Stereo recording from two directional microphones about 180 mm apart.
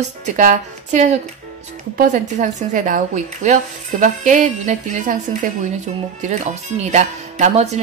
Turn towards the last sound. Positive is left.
turn(degrees=-40)  # may be behind; listen again after turning